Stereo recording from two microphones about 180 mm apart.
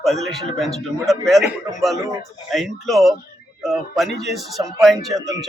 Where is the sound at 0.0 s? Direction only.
Centre (ahead or behind).